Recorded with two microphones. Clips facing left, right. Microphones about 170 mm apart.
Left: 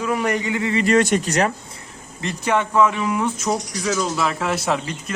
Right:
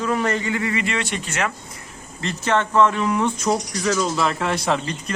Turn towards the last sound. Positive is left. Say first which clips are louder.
# even
turn(degrees=5)  # may be behind; listen again after turning